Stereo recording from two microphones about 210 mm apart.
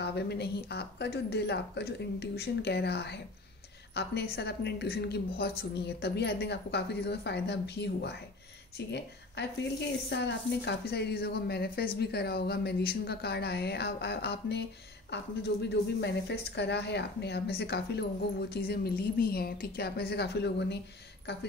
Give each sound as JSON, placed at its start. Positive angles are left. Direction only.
{"t": 0.0, "sound": "speech", "side_deg": 50}